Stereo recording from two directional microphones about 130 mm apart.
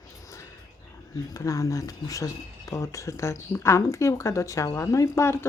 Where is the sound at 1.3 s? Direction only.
25° left (ahead or behind).